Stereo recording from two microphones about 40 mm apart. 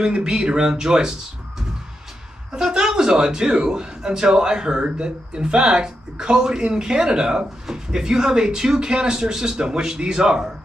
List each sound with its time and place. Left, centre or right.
0.0 s speech: right
2.5 s speech: centre